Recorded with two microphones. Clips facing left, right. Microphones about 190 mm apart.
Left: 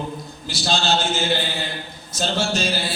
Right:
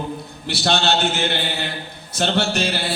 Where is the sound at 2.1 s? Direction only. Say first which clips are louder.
Right 2 dB; 65° right (ahead or behind).